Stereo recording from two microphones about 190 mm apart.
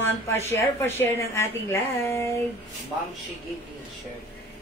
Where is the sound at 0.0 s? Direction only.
15° left (ahead or behind).